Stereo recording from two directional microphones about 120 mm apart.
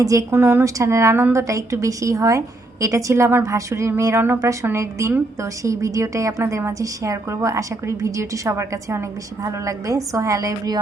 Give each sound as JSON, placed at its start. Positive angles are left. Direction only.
{"t": 0.0, "sound": "a woman's voice", "side_deg": -30}